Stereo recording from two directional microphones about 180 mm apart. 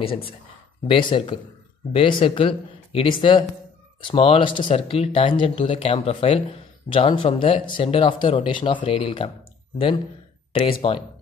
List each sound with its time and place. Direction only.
0.0 s speech: 30° left (ahead or behind)
10.6 s speech: 30° left (ahead or behind)